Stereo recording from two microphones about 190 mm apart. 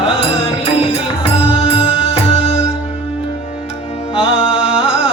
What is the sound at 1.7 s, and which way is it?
Music, 30° left (ahead or behind).